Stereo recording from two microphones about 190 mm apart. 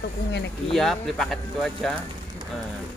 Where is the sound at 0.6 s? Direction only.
Centre (ahead or behind).